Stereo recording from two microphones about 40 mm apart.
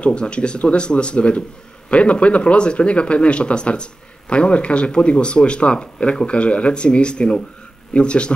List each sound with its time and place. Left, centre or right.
0.0 s speech: left